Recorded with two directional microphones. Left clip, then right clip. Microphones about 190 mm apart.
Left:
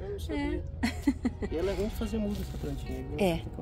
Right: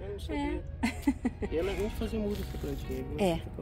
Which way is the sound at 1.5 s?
45° left (ahead or behind).